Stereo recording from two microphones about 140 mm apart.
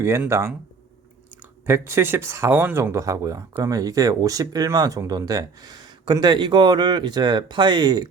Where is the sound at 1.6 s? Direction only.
20° right (ahead or behind).